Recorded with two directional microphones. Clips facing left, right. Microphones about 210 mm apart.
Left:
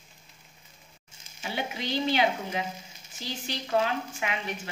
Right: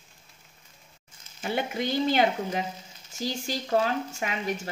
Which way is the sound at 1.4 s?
50° right (ahead or behind).